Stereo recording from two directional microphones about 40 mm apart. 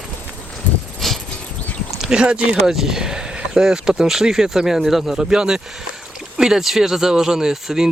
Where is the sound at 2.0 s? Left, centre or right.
Right.